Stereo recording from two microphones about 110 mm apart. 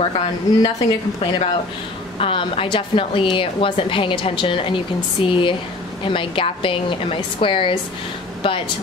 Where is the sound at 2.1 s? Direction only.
60° left (ahead or behind).